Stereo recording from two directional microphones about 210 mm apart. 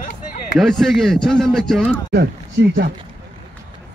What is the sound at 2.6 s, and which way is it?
Speech, 55° right (ahead or behind).